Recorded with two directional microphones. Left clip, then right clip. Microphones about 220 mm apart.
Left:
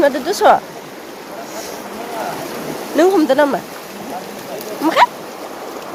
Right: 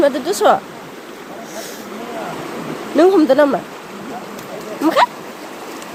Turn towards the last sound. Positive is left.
turn(degrees=-10)  # may be behind; listen again after turning